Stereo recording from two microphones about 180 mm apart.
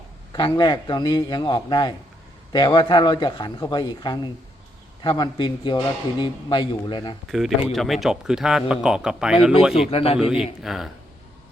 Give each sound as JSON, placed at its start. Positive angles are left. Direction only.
{"t": 0.3, "sound": "a man's voice", "side_deg": 25}
{"t": 7.3, "sound": "speech", "side_deg": 0}
{"t": 9.9, "sound": "a man's voice", "side_deg": 30}
{"t": 10.2, "sound": "speech", "side_deg": -5}